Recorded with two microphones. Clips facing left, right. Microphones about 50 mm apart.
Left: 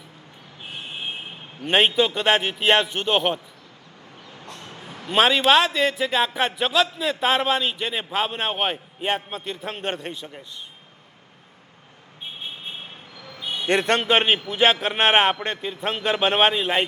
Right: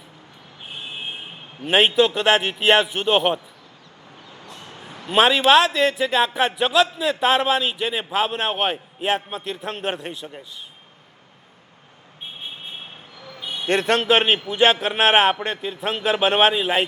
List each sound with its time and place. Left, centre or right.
1.6 s a man's voice: centre
4.7 s a sound: centre
5.0 s a man's voice: centre
13.8 s a man's voice: centre